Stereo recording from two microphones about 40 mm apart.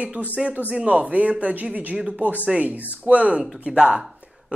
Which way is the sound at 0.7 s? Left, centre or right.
Right.